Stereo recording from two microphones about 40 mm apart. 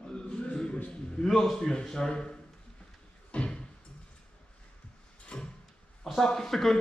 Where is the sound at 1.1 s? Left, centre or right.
Centre.